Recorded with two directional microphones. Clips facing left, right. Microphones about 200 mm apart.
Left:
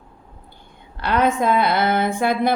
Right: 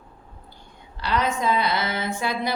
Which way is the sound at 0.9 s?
55° left (ahead or behind).